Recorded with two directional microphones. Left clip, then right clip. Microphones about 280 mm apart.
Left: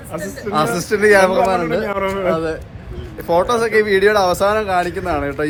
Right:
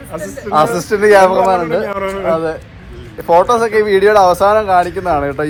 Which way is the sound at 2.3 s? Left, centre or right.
Centre.